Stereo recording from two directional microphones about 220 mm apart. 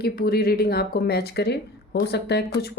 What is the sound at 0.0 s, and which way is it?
Speech, 45° left (ahead or behind).